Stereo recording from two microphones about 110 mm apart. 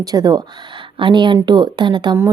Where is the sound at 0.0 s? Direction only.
35° right (ahead or behind).